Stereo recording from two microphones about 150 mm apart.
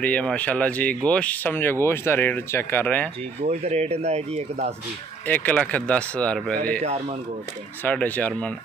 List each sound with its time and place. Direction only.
0.0 s speech: 10° left (ahead or behind)
3.4 s speech: 45° right (ahead or behind)
5.2 s speech: 10° left (ahead or behind)
6.8 s speech: 45° right (ahead or behind)
7.8 s speech: 10° left (ahead or behind)